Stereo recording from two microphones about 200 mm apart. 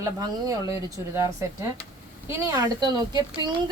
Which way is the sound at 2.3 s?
15° right (ahead or behind).